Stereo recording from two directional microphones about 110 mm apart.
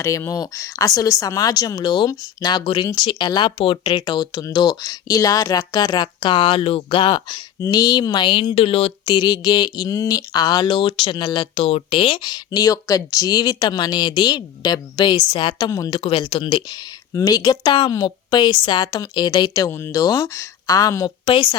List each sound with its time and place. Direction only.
0.0 s speech: 25° left (ahead or behind); by 7.4 s 45° left (ahead or behind)
7.6 s speech: 35° left (ahead or behind); by 9.1 s 60° left (ahead or behind)
9.1 s speech: 40° left (ahead or behind)
15.9 s speech: 55° left (ahead or behind)
17.2 s speech: 30° left (ahead or behind)
19.7 s speech: 25° left (ahead or behind)
20.0 s speech: 35° left (ahead or behind)
21.2 s a woman's voice: 50° left (ahead or behind)